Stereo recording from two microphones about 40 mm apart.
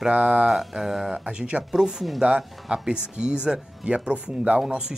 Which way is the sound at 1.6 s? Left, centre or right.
Centre.